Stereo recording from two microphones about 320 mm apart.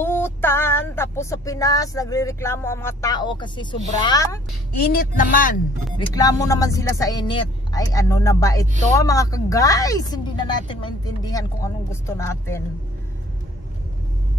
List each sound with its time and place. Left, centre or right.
0.0 s a sound: centre
4.0 s a woman's voice: centre
4.7 s speech: left
5.9 s a woman's voice: centre